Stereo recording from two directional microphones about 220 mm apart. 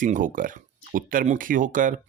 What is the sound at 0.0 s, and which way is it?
Speech, 35° right (ahead or behind).